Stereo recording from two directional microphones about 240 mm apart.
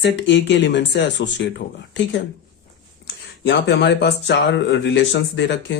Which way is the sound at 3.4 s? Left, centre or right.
Left.